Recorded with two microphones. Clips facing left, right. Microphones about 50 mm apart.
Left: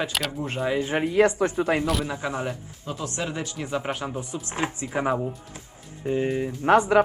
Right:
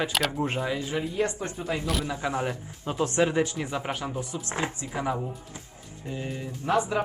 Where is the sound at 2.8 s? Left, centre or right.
Right.